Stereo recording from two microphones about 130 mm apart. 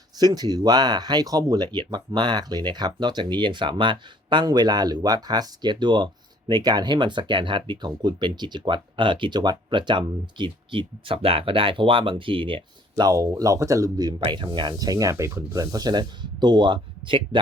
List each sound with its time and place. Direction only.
0.2 s speech: 30° right (ahead or behind)